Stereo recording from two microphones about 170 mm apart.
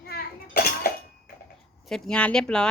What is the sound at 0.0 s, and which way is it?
Cutlery, 65° left (ahead or behind).